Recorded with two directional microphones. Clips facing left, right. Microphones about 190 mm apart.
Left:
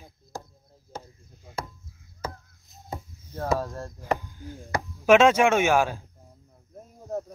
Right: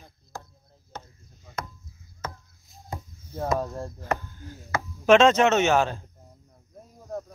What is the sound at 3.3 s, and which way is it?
Speech, 5° right (ahead or behind).